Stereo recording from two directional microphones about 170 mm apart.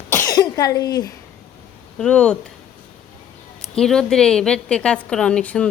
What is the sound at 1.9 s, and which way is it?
Speech, 5° left (ahead or behind).